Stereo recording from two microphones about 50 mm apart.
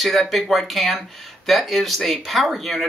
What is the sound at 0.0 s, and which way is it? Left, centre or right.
Speech, centre.